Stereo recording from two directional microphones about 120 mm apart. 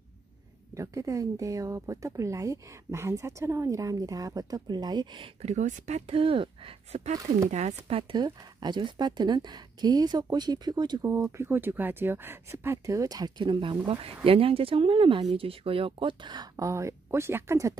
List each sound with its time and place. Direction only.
0.7 s speech: 30° right (ahead or behind)
5.4 s speech: 80° right; by 7.0 s 50° right (ahead or behind)
7.5 s speech: 70° right (ahead or behind)
8.1 s speech: 35° right (ahead or behind)